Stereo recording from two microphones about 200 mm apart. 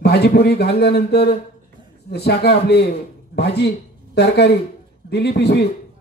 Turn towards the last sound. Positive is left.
turn(degrees=55)  # may be behind; listen again after turning